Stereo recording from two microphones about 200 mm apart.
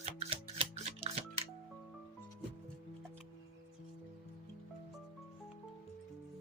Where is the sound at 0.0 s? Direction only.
30° right (ahead or behind).